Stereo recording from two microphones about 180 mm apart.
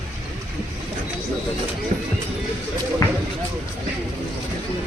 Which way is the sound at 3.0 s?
20° left (ahead or behind).